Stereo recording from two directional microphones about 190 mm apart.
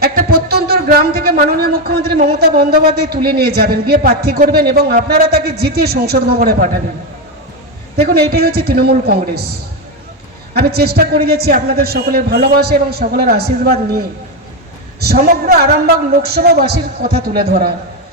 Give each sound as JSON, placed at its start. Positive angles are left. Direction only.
{"t": 0.0, "sound": "a man's voice", "side_deg": -55}
{"t": 8.0, "sound": "a man's voice", "side_deg": -55}
{"t": 10.5, "sound": "a man's voice", "side_deg": -55}
{"t": 15.0, "sound": "a man's voice", "side_deg": -55}